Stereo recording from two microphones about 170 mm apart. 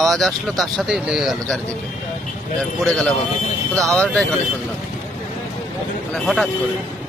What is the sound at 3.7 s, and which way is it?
Speech, 5° left (ahead or behind).